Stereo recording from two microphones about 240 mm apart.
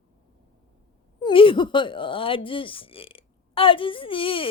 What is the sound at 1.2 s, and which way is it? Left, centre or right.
Speech, left.